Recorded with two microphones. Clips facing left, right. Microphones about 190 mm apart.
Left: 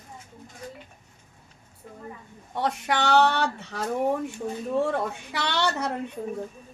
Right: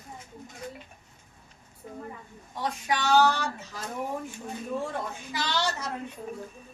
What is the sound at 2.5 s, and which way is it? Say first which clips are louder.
Speech: left 4 dB; 65° left (ahead or behind).